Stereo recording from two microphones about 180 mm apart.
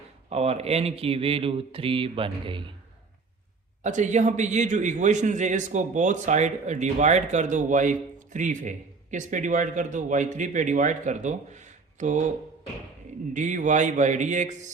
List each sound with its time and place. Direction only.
0.3 s speech: 35° right (ahead or behind)
3.8 s a man's voice: 40° right (ahead or behind)
13.3 s a man's voice: 45° right (ahead or behind)